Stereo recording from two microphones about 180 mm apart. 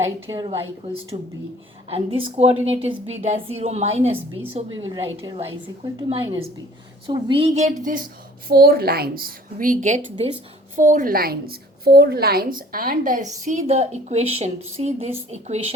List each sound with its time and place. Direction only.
0.3 s a woman's voice: 25° right (ahead or behind); by 15.6 s 40° right (ahead or behind)